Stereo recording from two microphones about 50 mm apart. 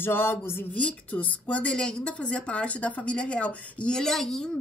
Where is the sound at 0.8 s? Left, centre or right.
Left.